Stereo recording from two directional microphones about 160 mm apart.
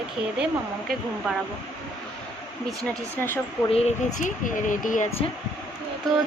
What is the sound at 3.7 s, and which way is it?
Speech, 40° left (ahead or behind).